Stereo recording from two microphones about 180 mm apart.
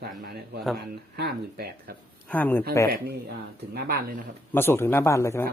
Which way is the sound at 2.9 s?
60° right (ahead or behind).